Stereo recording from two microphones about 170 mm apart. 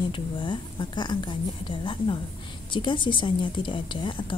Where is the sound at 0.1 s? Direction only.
30° left (ahead or behind).